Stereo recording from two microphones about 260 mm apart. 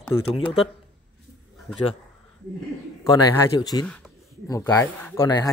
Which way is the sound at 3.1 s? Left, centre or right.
Centre.